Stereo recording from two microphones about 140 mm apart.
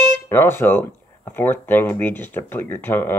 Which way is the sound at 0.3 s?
15° left (ahead or behind).